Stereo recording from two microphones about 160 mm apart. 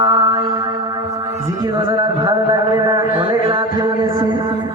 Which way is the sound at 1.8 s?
30° right (ahead or behind).